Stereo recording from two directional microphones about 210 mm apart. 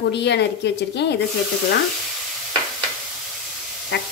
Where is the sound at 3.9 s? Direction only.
50° left (ahead or behind).